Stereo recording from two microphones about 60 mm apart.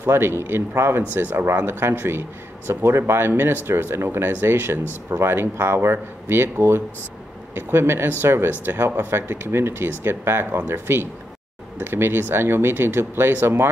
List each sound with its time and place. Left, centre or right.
0.0 s speech: right